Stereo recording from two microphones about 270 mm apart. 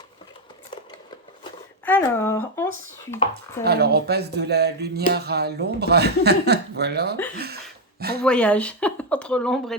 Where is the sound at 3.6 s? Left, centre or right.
Right.